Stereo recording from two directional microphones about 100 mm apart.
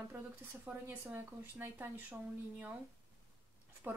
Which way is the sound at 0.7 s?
10° right (ahead or behind).